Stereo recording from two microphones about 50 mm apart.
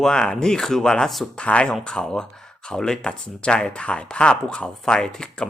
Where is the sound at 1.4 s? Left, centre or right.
Left.